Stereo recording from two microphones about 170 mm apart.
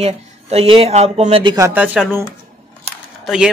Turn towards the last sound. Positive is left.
turn(degrees=-5)  # may be behind; listen again after turning